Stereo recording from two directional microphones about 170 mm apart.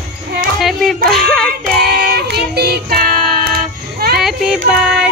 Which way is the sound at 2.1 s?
70° right (ahead or behind).